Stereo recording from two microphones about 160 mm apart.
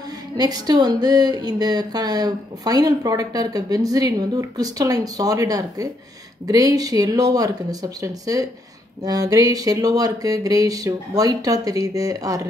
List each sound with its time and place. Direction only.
0.4 s speech: 25° right (ahead or behind)